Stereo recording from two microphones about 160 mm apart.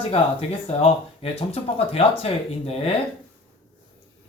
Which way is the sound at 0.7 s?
40° left (ahead or behind).